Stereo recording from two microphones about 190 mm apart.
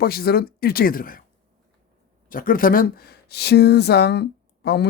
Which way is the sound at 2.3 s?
45° left (ahead or behind).